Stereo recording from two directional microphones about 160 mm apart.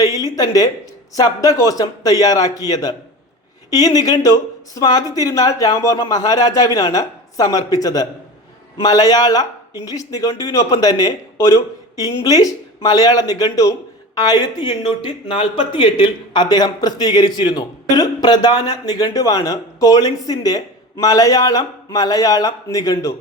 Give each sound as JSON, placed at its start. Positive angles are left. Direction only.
{"t": 0.0, "sound": "speech", "side_deg": 25}